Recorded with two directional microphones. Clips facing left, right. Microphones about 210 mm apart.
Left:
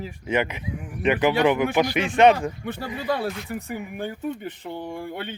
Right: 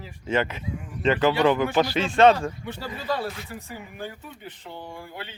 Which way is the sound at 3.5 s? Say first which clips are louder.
Left 7 dB; 60° left (ahead or behind).